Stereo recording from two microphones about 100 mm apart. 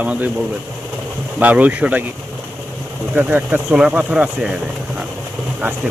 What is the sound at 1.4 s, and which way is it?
Speech, 15° right (ahead or behind).